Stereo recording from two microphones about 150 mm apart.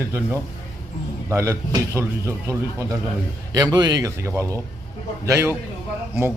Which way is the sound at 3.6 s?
25° right (ahead or behind).